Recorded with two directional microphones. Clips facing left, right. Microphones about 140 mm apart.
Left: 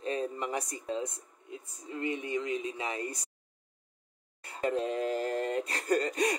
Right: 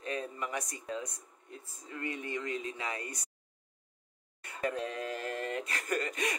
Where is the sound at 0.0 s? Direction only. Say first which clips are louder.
Left 4 dB; 30° left (ahead or behind).